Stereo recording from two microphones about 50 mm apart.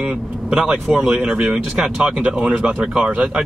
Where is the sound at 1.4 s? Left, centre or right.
Centre.